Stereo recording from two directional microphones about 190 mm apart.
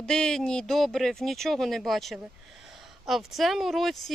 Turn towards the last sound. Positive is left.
turn(degrees=0)  # may be behind; listen again after turning